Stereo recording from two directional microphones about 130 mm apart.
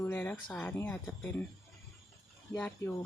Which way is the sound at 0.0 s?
15° left (ahead or behind).